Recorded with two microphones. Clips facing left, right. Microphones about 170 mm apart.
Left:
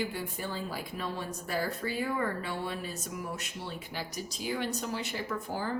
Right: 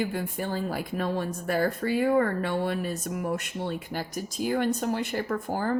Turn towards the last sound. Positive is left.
turn(degrees=-50)  # may be behind; listen again after turning